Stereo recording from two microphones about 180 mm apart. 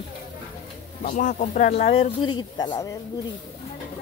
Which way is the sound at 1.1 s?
45° left (ahead or behind).